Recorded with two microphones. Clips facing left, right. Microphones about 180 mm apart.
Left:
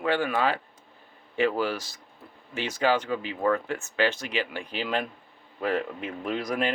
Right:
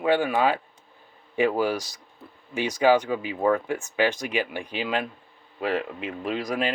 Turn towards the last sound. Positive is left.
turn(degrees=0)  # may be behind; listen again after turning